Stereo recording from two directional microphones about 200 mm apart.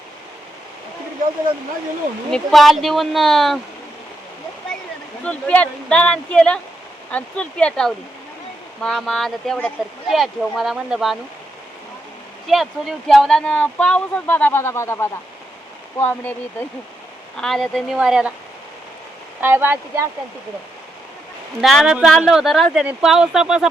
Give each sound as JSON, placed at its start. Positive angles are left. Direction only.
{"t": 2.3, "sound": "speech", "side_deg": 0}
{"t": 5.2, "sound": "speech", "side_deg": 5}
{"t": 12.5, "sound": "speech", "side_deg": 0}
{"t": 19.4, "sound": "speech", "side_deg": -10}
{"t": 21.6, "sound": "speech", "side_deg": 0}